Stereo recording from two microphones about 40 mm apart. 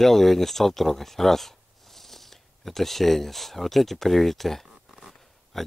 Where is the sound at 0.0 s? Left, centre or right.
Centre.